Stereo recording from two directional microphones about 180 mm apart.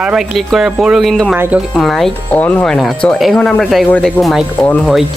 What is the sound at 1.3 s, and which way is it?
Speech, 10° right (ahead or behind).